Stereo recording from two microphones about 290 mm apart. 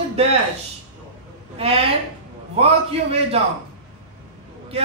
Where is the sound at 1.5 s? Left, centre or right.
Centre.